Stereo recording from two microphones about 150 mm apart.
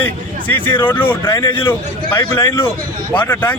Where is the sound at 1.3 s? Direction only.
30° left (ahead or behind).